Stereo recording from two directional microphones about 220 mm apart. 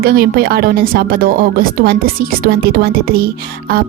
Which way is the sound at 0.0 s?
45° right (ahead or behind).